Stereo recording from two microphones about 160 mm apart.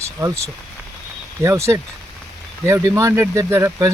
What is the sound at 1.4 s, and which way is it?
Speech, 20° right (ahead or behind).